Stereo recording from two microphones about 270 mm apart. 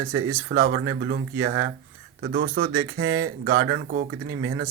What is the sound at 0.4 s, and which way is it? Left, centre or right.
Speech, right.